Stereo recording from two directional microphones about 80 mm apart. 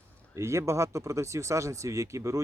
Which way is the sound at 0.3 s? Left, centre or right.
Right.